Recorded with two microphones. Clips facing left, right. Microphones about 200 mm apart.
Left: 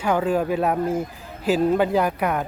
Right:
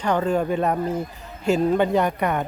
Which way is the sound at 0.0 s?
5° left (ahead or behind).